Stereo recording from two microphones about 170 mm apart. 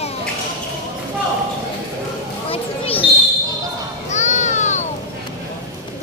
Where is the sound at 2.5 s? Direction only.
35° left (ahead or behind).